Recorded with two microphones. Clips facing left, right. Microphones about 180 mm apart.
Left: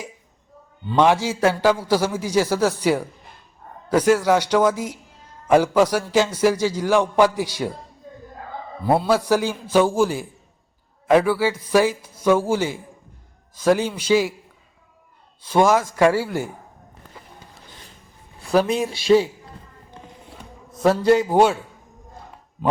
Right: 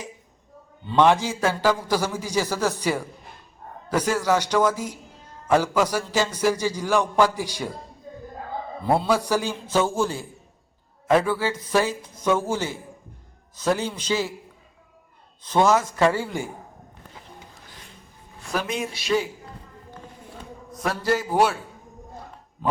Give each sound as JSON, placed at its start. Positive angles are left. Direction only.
{"t": 0.9, "sound": "a man's voice", "side_deg": 10}
{"t": 8.9, "sound": "a man's voice", "side_deg": 5}
{"t": 15.4, "sound": "a man's voice", "side_deg": 10}
{"t": 18.5, "sound": "speech", "side_deg": 30}
{"t": 20.8, "sound": "speech", "side_deg": 25}